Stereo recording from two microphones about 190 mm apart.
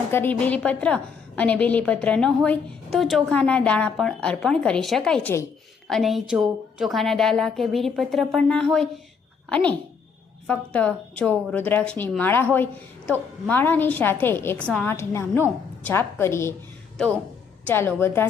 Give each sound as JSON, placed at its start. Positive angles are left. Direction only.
{"t": 0.1, "sound": "a woman's voice", "side_deg": 10}
{"t": 5.9, "sound": "a woman's voice", "side_deg": 0}
{"t": 17.7, "sound": "a woman's voice", "side_deg": 10}